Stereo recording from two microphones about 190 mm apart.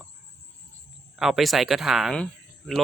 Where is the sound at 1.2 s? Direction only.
Centre (ahead or behind).